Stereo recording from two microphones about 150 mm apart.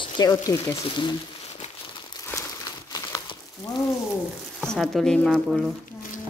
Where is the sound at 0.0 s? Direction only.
25° left (ahead or behind).